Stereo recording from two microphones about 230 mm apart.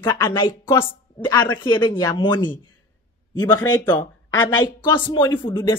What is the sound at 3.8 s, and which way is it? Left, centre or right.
A woman's voice, centre.